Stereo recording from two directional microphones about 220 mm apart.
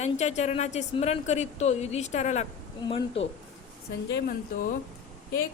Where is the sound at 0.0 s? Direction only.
30° left (ahead or behind).